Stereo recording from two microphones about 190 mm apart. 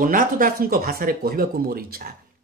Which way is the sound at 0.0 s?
45° right (ahead or behind).